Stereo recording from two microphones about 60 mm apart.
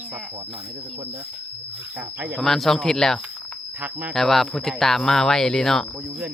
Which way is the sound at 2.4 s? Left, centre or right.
Centre.